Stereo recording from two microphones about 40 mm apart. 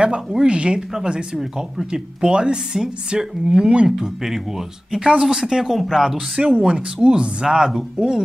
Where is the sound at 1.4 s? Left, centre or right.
Centre.